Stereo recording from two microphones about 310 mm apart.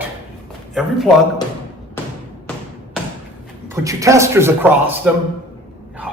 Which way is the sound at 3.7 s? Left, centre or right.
Centre.